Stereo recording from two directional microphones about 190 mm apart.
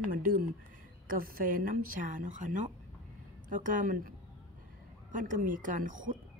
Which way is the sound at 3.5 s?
45° right (ahead or behind).